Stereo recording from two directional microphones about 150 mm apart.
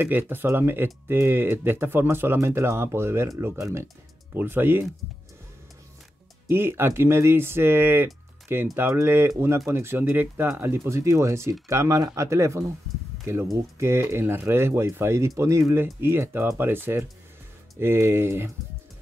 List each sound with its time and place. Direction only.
0.0 s speech: 15° right (ahead or behind)
6.4 s speech: 15° right (ahead or behind)